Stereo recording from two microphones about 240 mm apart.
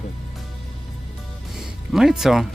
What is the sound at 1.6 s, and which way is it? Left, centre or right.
Music, centre.